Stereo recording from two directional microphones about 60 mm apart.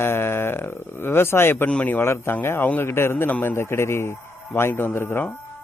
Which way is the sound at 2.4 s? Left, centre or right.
Left.